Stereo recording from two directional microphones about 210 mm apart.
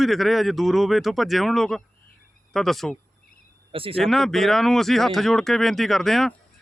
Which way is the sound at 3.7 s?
25° right (ahead or behind).